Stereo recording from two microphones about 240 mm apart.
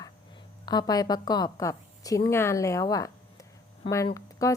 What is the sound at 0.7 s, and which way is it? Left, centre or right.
A woman's voice, centre.